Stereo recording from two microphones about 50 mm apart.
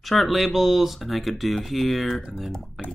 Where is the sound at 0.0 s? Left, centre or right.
Centre.